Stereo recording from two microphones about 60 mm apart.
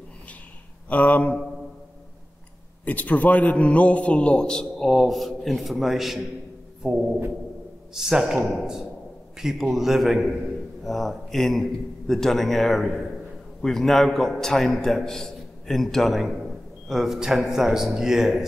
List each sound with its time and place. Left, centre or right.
0.8 s a man's voice: left
2.8 s a man's voice: left
4.7 s a man's voice: centre
9.4 s a man's voice: centre